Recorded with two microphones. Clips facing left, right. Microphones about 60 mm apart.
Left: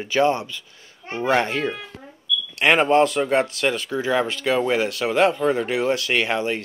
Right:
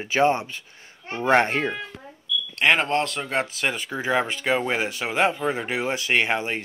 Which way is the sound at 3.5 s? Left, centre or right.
Centre.